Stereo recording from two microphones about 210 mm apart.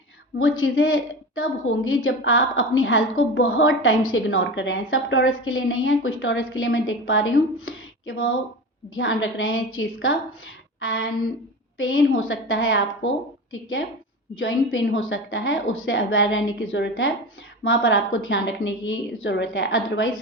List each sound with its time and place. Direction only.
0.3 s a woman's voice: 75° left (ahead or behind)